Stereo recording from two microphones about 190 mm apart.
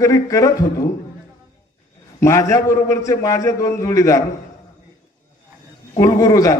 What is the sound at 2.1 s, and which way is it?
A man's voice, 15° left (ahead or behind).